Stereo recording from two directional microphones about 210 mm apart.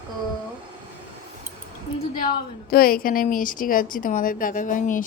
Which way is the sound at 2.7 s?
45° left (ahead or behind).